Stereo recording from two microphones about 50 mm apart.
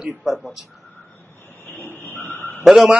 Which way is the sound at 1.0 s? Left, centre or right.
Left.